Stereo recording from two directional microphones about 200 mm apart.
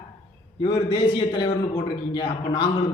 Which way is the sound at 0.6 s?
20° left (ahead or behind).